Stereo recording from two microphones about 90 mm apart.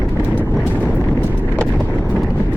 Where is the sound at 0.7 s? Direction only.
15° left (ahead or behind).